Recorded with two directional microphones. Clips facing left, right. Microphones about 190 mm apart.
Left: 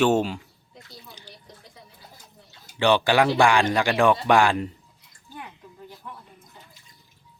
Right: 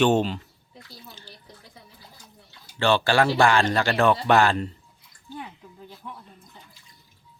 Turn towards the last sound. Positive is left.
turn(degrees=-10)  # may be behind; listen again after turning